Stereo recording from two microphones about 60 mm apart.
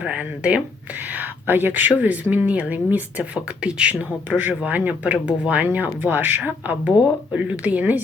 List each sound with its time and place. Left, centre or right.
0.0 s speech: centre